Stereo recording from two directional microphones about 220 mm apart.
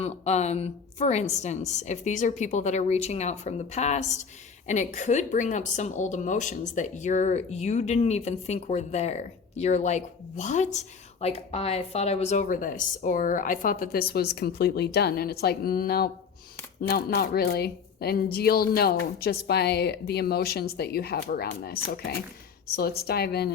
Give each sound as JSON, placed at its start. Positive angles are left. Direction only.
{"t": 0.0, "sound": "a woman's voice", "side_deg": 30}